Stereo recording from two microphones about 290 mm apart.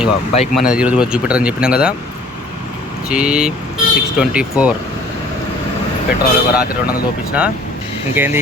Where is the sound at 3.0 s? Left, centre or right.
Centre.